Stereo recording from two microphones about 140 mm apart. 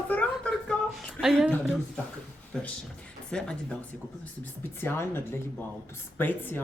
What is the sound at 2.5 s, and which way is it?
Speech, 5° left (ahead or behind).